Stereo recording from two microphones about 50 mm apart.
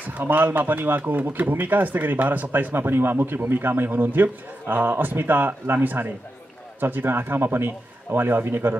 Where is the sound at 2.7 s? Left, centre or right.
Right.